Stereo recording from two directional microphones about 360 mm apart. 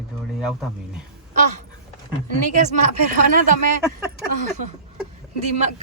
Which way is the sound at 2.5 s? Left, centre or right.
Centre.